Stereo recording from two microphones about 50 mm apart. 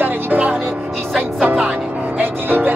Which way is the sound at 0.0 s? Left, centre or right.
Right.